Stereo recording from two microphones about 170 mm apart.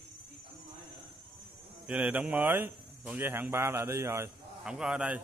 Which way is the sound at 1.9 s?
10° right (ahead or behind).